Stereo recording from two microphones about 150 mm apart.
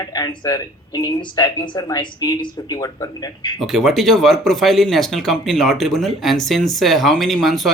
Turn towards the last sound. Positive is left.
turn(degrees=0)  # may be behind; listen again after turning